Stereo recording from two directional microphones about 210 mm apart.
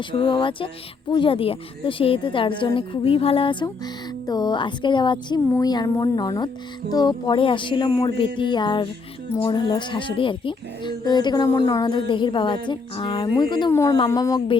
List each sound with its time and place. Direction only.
0.0 s speech: 25° left (ahead or behind)